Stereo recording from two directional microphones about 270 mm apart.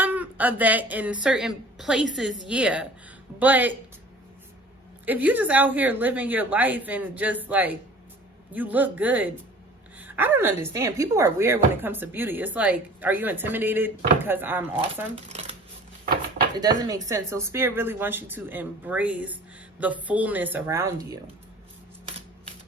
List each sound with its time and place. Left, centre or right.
0.0 s a woman's voice: centre
5.0 s a woman's voice: centre
15.1 s speech: right
16.6 s a woman's voice: centre